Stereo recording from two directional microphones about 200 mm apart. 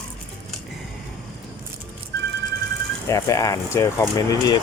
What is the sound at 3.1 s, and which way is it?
Speech, 15° left (ahead or behind).